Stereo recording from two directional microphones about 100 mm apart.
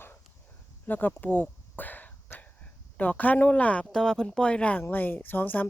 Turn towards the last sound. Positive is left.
turn(degrees=20)  # may be behind; listen again after turning